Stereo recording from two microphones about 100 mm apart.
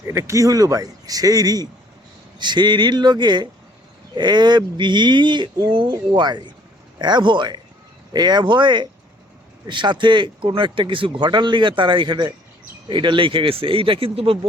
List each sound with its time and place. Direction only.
0.1 s speech: 30° right (ahead or behind); by 14.3 s 70° right (ahead or behind)